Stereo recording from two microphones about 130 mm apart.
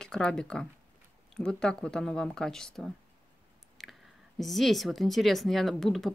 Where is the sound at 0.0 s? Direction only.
5° left (ahead or behind).